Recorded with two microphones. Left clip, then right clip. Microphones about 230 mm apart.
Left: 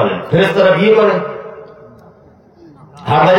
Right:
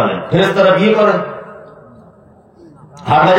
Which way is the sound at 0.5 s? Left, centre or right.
Right.